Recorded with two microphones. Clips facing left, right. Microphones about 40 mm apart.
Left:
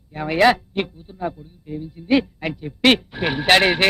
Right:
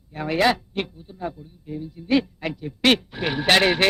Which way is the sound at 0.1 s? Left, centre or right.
Centre.